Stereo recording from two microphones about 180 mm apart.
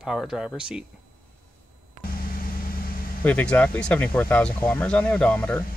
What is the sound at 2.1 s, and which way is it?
Vehicle, 55° left (ahead or behind).